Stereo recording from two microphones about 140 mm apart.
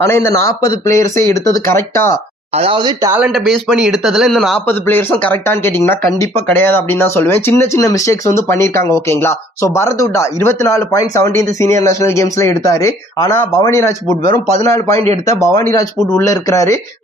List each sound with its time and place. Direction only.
0.0 s speech: 20° left (ahead or behind)
2.6 s speech: 40° right (ahead or behind)
3.2 s speech: 5° right (ahead or behind)
4.6 s speech: 15° left (ahead or behind)
14.9 s speech: 50° right (ahead or behind)
15.5 s speech: 25° left (ahead or behind)